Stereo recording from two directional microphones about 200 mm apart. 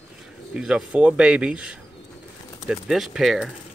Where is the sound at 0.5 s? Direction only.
5° right (ahead or behind).